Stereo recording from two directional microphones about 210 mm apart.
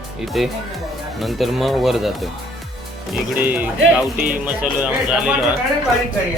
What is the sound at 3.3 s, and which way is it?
Speech, 10° right (ahead or behind).